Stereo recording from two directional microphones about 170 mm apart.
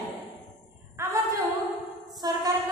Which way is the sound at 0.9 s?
15° right (ahead or behind).